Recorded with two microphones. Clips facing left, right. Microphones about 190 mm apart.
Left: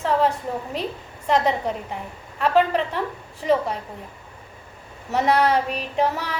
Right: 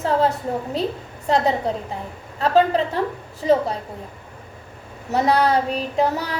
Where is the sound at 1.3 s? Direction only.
35° right (ahead or behind).